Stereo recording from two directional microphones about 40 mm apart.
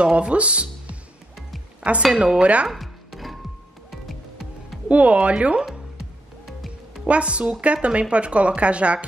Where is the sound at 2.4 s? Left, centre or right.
Right.